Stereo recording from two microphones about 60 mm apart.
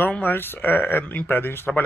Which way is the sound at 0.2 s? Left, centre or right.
Left.